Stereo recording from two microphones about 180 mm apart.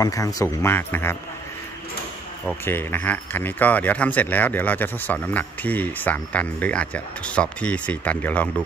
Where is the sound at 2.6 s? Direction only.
10° left (ahead or behind).